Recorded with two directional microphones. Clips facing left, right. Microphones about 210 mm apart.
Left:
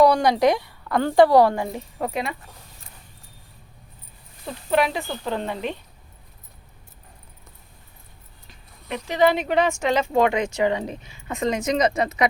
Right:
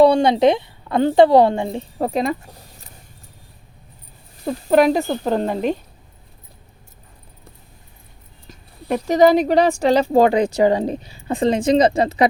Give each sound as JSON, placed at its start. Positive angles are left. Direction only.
{"t": 0.0, "sound": "a woman's voice", "side_deg": -25}
{"t": 4.4, "sound": "speech", "side_deg": -40}
{"t": 8.4, "sound": "speech", "side_deg": -40}